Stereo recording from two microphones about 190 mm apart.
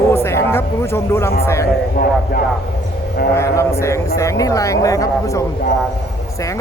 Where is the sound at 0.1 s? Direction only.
15° left (ahead or behind).